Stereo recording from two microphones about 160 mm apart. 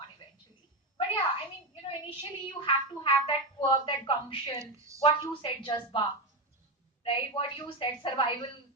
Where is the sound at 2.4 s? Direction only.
30° left (ahead or behind).